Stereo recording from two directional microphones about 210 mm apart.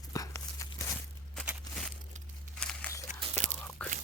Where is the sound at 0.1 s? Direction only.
15° left (ahead or behind).